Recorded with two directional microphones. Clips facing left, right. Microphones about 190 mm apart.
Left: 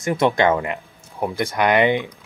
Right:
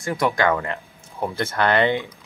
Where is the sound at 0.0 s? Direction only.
20° left (ahead or behind).